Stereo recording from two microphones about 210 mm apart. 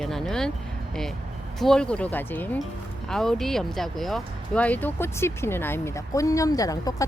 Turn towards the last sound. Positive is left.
turn(degrees=15)  # may be behind; listen again after turning